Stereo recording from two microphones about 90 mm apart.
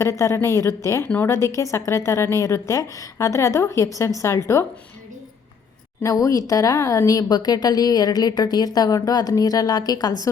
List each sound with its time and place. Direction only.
0.0 s a woman's voice: 35° left (ahead or behind)
1.0 s a woman's voice: 15° left (ahead or behind)
1.3 s a woman's voice: 30° left (ahead or behind)
6.0 s speech: 40° left (ahead or behind)